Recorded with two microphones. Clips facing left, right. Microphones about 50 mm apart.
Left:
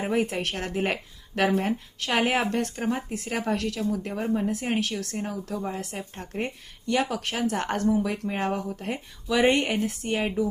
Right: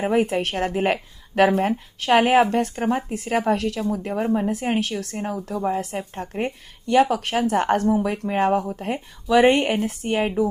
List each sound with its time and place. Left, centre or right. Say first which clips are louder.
0.0 s speech: right 5 dB; right
1.4 s speech: right 6 dB; right